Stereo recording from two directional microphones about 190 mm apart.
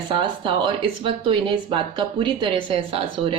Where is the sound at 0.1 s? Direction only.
25° right (ahead or behind).